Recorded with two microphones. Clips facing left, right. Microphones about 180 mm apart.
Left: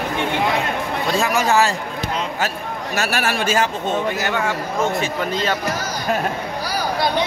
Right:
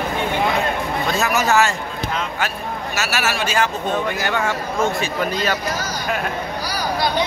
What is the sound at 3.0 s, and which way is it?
Speech, 55° left (ahead or behind).